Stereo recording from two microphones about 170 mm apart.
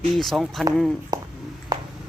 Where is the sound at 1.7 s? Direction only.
25° right (ahead or behind).